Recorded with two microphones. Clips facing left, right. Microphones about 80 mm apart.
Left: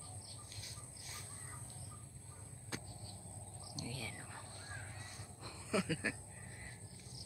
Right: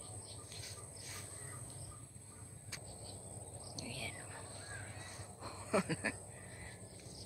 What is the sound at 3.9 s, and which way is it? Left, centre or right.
Whispering, centre.